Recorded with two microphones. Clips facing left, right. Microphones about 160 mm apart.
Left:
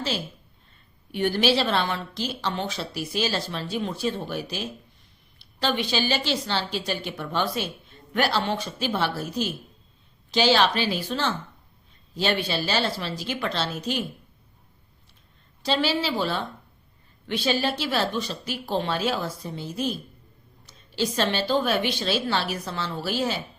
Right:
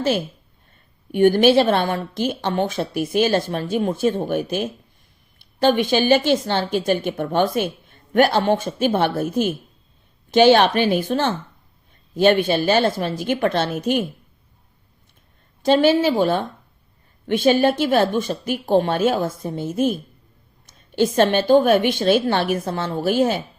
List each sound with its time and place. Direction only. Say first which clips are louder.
0.0 s a woman's voice: right 9 dB; 55° right (ahead or behind)
15.6 s a woman's voice: right 9 dB; 50° right (ahead or behind)